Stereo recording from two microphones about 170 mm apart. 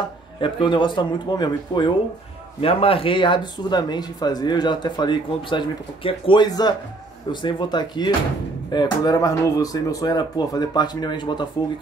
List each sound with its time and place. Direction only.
0.4 s speech: 30° left (ahead or behind)